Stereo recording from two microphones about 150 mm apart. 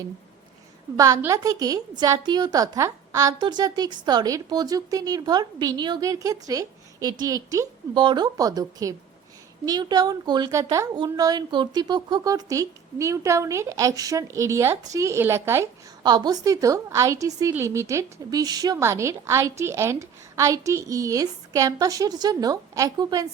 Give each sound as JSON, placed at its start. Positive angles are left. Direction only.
{"t": 0.9, "sound": "speech", "side_deg": -20}
{"t": 3.3, "sound": "a woman's voice", "side_deg": -30}
{"t": 16.0, "sound": "speech", "side_deg": -30}